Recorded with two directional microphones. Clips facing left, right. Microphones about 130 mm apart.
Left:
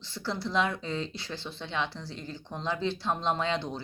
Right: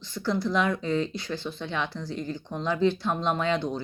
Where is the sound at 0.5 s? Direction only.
25° left (ahead or behind).